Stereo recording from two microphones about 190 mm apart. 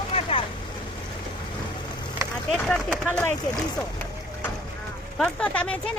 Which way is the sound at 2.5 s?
Centre (ahead or behind).